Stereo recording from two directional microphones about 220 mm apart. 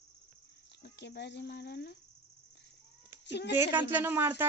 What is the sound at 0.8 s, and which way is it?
Speech, 50° left (ahead or behind).